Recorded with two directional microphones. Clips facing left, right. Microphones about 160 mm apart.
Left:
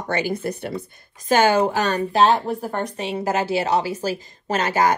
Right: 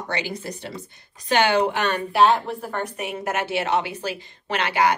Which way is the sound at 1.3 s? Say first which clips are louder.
Left 3 dB; 45° left (ahead or behind).